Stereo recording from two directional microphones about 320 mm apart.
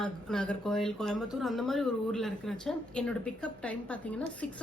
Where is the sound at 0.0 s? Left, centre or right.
Centre.